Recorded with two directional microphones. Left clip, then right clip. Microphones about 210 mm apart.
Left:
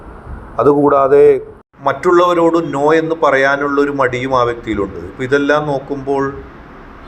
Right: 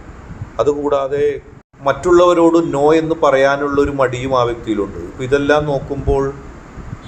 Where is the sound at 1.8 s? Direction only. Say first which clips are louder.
Even; 15° left (ahead or behind).